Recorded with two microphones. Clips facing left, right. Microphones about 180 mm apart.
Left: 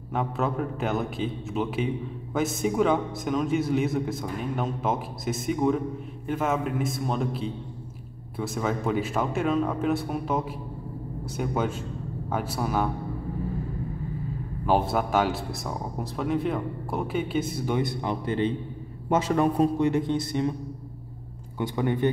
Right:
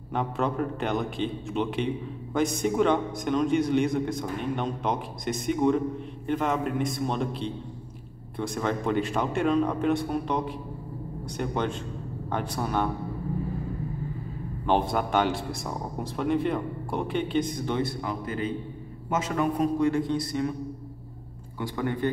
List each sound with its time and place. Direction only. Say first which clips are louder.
0.1 s a man's voice: even; centre (ahead or behind)
14.7 s a man's voice: left 1 dB; 5° left (ahead or behind)
17.8 s a man's voice: left 3 dB; 25° left (ahead or behind)
19.8 s speech: left 1 dB; 20° left (ahead or behind)
21.5 s speech: left 3 dB; 20° left (ahead or behind)